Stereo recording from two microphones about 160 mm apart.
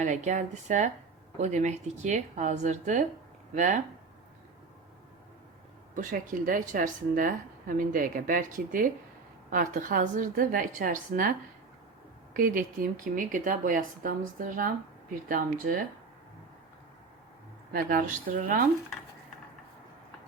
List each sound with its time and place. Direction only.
0.0 s speech: 50° right (ahead or behind)
6.0 s a woman's voice: 55° right (ahead or behind)
17.7 s a woman's voice: 65° right (ahead or behind)